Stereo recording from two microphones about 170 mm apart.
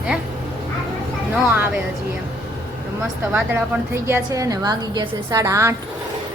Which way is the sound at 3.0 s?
5° right (ahead or behind).